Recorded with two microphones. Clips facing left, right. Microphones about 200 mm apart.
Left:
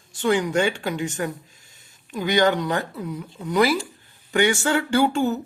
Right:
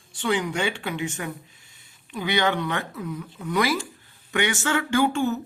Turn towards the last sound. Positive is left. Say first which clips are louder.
# left 2 dB
turn(degrees=35)  # may be behind; listen again after turning